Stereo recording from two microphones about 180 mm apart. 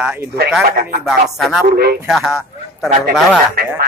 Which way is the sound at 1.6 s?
60° right (ahead or behind).